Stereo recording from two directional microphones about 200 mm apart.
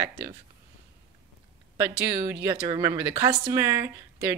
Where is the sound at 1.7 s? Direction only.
10° right (ahead or behind).